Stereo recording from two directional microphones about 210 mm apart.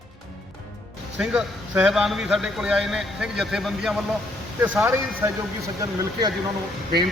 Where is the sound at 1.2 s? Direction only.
5° right (ahead or behind).